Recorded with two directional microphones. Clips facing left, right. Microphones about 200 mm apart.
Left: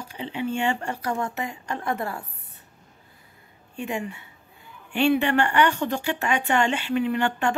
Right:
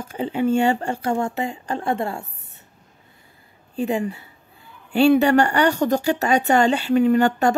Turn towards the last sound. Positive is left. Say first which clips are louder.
# right 7 dB
turn(degrees=-40)  # may be behind; listen again after turning